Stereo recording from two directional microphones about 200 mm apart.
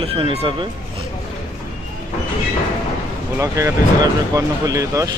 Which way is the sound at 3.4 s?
15° right (ahead or behind).